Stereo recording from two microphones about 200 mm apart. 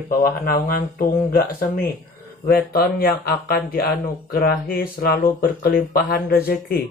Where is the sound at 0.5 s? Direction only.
50° left (ahead or behind).